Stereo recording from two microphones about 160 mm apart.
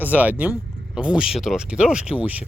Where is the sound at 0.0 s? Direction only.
10° right (ahead or behind).